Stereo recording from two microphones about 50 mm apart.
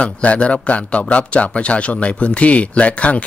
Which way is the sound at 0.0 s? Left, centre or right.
Left.